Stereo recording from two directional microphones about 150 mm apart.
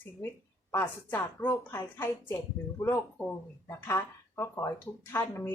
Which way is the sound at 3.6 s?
20° left (ahead or behind).